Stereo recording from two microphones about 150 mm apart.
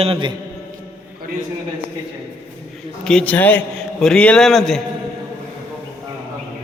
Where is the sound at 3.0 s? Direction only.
5° left (ahead or behind).